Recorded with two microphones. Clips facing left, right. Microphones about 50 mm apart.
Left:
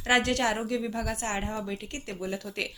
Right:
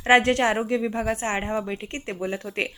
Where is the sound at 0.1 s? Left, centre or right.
Right.